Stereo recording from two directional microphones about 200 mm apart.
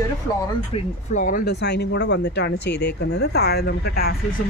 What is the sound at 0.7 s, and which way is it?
Speech, 40° left (ahead or behind).